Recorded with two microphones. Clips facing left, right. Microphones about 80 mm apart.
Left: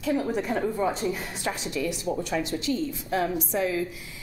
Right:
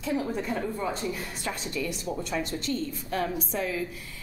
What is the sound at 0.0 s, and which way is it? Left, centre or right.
A woman's voice, centre.